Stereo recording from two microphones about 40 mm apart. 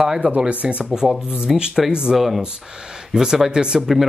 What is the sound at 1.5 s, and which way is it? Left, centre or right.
Speech, centre.